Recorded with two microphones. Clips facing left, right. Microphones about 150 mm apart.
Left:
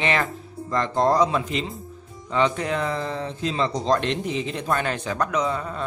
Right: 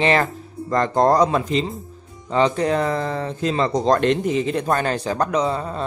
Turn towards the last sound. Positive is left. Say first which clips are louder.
# right 3 dB
turn(degrees=-30)  # may be behind; listen again after turning